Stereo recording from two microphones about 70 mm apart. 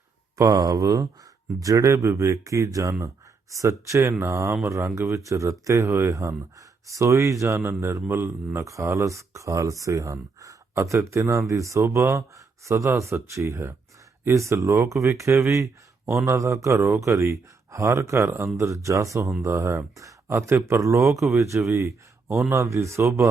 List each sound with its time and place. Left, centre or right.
0.3 s speech: right